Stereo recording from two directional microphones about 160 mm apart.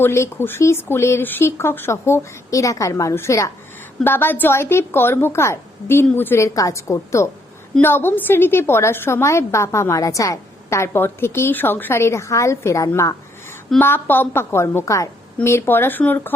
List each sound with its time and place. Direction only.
0.0 s a woman's voice: 15° left (ahead or behind)